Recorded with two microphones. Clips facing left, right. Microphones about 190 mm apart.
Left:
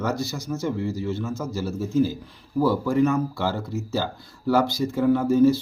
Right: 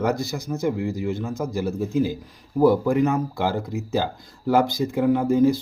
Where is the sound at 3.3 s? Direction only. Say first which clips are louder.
Right 2 dB; 15° right (ahead or behind).